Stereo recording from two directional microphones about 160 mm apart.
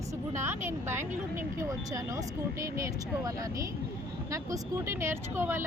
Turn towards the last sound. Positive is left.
turn(degrees=-15)  # may be behind; listen again after turning